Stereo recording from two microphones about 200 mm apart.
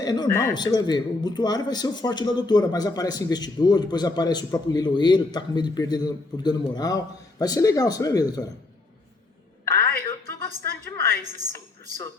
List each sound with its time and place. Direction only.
0.0 s a man's voice: 20° left (ahead or behind)
9.6 s music: 15° left (ahead or behind)